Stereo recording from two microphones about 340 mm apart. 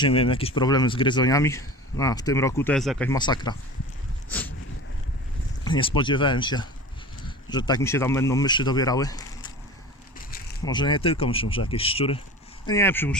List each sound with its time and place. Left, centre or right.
0.0 s speech: centre
4.3 s a sound: centre
5.6 s speech: centre
10.7 s speech: centre